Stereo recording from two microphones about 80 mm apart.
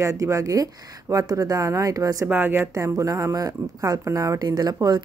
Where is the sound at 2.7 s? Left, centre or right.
Right.